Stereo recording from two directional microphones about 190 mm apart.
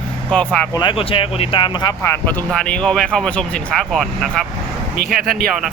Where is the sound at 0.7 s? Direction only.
25° left (ahead or behind).